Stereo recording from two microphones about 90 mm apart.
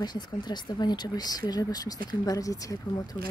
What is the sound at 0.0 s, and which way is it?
Speech, 50° left (ahead or behind).